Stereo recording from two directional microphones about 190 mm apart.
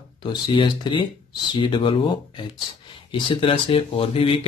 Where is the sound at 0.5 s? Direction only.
25° left (ahead or behind).